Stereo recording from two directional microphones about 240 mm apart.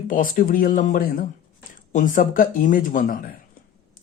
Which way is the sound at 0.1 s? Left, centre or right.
Left.